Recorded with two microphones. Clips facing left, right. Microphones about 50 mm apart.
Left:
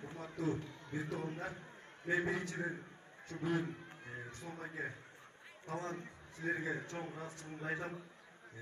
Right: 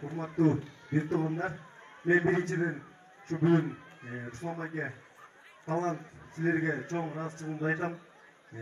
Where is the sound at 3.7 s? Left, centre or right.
Right.